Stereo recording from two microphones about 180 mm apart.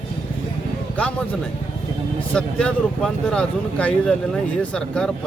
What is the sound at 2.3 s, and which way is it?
A man's voice, 5° left (ahead or behind).